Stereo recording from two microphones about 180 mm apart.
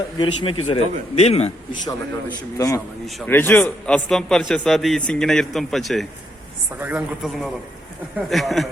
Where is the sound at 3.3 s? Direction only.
10° left (ahead or behind).